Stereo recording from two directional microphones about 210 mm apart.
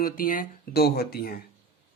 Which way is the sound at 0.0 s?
40° left (ahead or behind).